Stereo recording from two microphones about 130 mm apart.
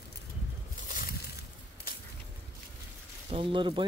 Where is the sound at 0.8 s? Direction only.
90° left.